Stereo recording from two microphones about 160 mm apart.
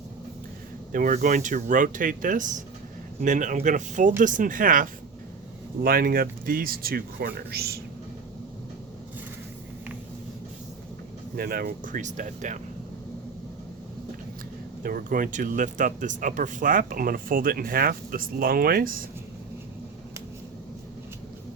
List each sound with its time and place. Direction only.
0.9 s speech: 55° right (ahead or behind); by 7.8 s 80° right
11.3 s speech: 70° right (ahead or behind); by 12.5 s 55° right (ahead or behind)
14.8 s speech: 60° right (ahead or behind)